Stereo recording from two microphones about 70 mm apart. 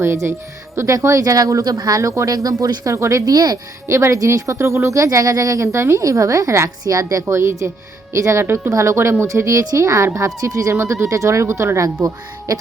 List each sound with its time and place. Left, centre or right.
0.0 s speech: right
1.7 s speech: right
2.0 s speech: right
3.3 s speech: right
3.8 s speech: right
12.5 s speech: right